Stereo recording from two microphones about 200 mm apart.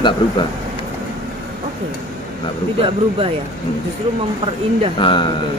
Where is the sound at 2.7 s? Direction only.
25° right (ahead or behind).